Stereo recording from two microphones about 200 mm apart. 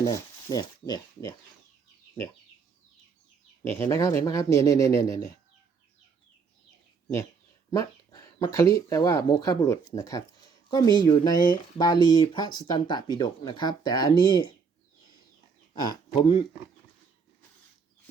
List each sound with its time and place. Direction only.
0.0 s speech: 15° left (ahead or behind)
3.6 s speech: 10° left (ahead or behind)
7.7 s dog: 15° left (ahead or behind)
8.7 s speech: 15° left (ahead or behind)
15.7 s speech: 20° left (ahead or behind)